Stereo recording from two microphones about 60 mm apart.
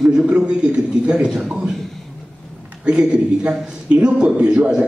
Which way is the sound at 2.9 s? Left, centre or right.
Centre.